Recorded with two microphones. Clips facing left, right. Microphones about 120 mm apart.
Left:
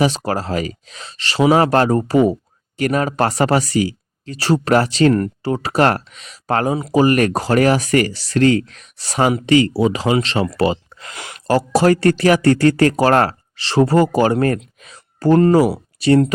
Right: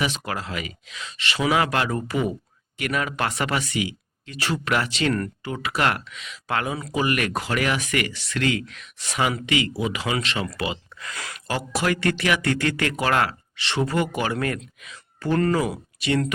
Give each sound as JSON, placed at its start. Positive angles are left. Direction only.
{"t": 0.0, "sound": "speech", "side_deg": 35}
{"t": 11.4, "sound": "speech", "side_deg": 35}